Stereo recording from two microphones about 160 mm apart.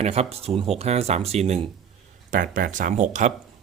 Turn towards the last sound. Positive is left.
turn(degrees=-50)  # may be behind; listen again after turning